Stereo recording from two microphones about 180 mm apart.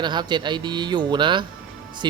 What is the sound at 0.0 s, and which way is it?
Speech, 25° right (ahead or behind).